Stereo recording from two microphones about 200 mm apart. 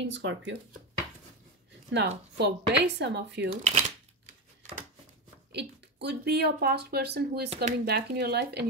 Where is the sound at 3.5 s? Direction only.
35° right (ahead or behind).